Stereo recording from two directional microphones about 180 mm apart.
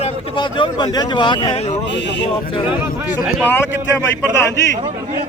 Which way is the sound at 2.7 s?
10° right (ahead or behind).